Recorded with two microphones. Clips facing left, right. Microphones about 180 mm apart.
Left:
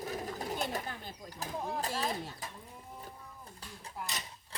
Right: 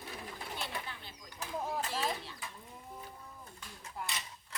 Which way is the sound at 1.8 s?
40° left (ahead or behind).